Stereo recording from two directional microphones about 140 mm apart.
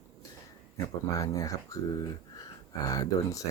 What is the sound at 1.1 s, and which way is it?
Speech, 25° left (ahead or behind).